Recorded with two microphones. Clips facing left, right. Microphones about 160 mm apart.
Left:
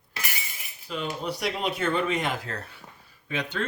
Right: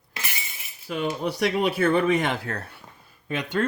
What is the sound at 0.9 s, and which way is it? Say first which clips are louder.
Speech: right 5 dB; 55° right (ahead or behind).